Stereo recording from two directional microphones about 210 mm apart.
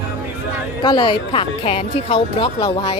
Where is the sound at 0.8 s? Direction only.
20° left (ahead or behind).